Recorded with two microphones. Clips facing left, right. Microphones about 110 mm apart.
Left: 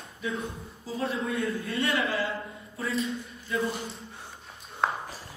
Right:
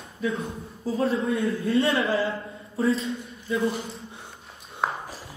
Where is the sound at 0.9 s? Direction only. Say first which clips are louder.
Right 5 dB; 30° right (ahead or behind).